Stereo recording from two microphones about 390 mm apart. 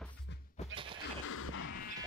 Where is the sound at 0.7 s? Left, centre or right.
Centre.